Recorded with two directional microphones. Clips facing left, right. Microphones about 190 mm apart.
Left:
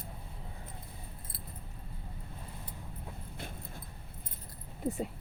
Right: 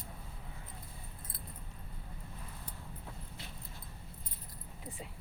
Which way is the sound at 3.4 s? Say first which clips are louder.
Left 6 dB; 50° left (ahead or behind).